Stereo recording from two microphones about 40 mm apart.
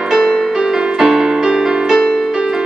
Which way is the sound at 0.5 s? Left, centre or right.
Centre.